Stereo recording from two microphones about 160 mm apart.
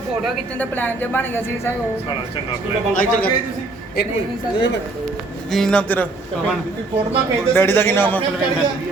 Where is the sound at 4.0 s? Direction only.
80° left.